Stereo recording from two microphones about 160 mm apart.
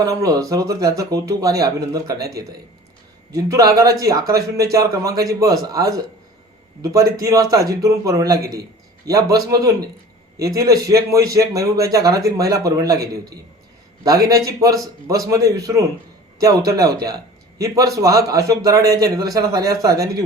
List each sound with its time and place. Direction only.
0.0 s speech: 20° right (ahead or behind)
3.3 s speech: 20° right (ahead or behind)
14.0 s speech: 20° right (ahead or behind)